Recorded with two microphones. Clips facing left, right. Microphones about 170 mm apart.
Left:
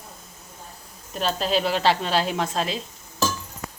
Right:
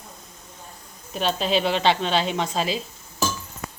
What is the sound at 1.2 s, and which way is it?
A woman's voice, centre (ahead or behind).